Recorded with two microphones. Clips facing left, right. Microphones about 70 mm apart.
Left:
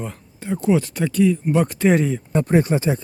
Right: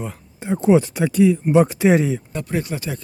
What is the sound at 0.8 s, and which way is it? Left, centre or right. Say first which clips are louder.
Speech: right 2 dB; centre.